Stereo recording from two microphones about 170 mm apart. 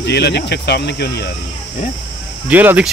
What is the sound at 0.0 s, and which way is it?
Speech, 75° left (ahead or behind).